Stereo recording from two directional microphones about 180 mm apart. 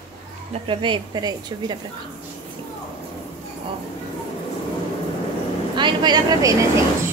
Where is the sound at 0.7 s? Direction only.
25° right (ahead or behind).